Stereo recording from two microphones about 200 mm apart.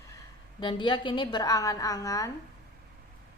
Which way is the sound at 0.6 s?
25° left (ahead or behind).